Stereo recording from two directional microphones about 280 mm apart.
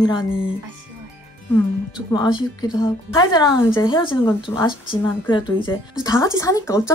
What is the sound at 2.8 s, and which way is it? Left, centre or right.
A woman's voice, centre.